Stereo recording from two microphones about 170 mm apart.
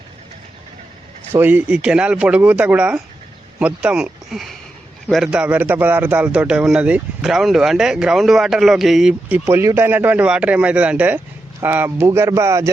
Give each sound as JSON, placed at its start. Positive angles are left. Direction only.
{"t": 1.3, "sound": "a man's voice", "side_deg": -10}
{"t": 9.5, "sound": "speech", "side_deg": -15}